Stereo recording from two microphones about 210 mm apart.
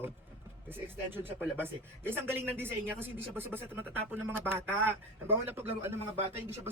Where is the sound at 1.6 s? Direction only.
10° right (ahead or behind).